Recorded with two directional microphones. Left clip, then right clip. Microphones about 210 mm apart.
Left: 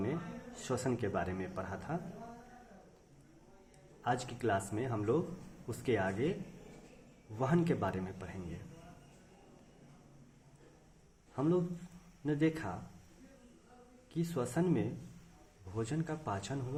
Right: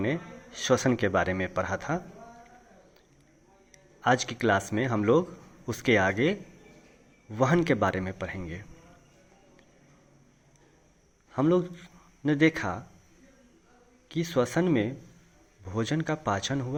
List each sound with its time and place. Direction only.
0.0 s a man's voice: 35° right (ahead or behind)
4.0 s a man's voice: 35° right (ahead or behind)
7.3 s a man's voice: 30° right (ahead or behind)
11.3 s a man's voice: 30° right (ahead or behind)
14.1 s a man's voice: 30° right (ahead or behind)